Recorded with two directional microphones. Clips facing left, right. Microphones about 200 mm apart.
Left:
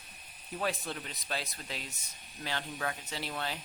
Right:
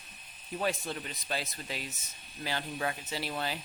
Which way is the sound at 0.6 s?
Centre (ahead or behind).